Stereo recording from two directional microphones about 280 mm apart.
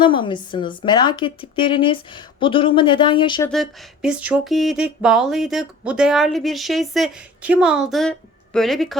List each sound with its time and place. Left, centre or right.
0.0 s speech: centre
3.5 s speech: centre